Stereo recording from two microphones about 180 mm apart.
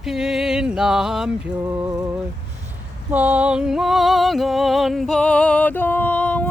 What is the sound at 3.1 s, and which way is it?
Music, 10° right (ahead or behind).